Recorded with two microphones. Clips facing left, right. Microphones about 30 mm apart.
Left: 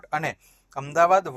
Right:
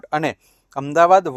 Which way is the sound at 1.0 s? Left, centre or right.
Right.